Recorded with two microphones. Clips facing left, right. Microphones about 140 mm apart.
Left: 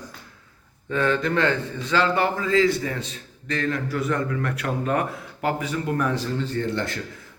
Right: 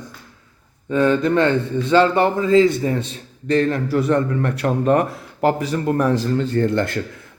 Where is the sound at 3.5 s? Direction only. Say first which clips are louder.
Right 8 dB; 35° right (ahead or behind).